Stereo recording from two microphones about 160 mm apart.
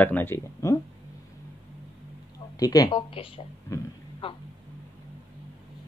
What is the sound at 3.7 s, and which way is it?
Speech, 20° left (ahead or behind).